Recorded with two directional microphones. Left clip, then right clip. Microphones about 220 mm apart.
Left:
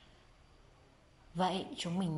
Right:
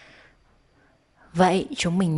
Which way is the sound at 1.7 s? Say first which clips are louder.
Right 13 dB; 40° right (ahead or behind).